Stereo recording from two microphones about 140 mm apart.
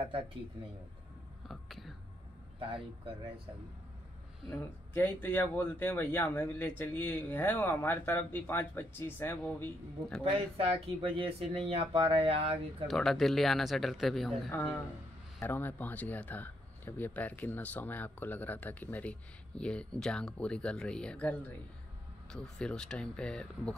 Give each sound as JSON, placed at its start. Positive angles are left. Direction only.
{"t": 1.5, "sound": "speech", "side_deg": 0}
{"t": 4.9, "sound": "speech", "side_deg": 15}
{"t": 10.2, "sound": "speech", "side_deg": -45}
{"t": 12.8, "sound": "speech", "side_deg": 5}
{"t": 15.4, "sound": "speech", "side_deg": 15}